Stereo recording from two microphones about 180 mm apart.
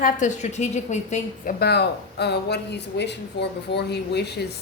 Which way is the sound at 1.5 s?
65° left (ahead or behind).